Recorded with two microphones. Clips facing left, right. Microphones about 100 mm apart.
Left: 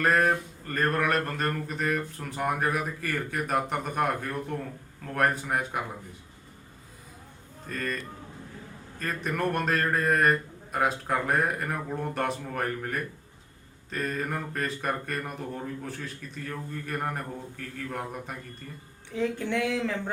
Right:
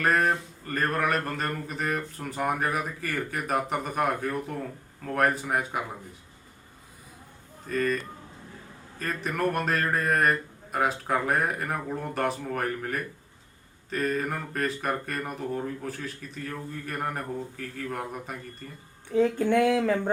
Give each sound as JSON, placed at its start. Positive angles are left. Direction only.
{"t": 0.0, "sound": "speech", "side_deg": 0}
{"t": 7.7, "sound": "speech", "side_deg": 0}
{"t": 9.0, "sound": "speech", "side_deg": 0}
{"t": 19.1, "sound": "speech", "side_deg": -45}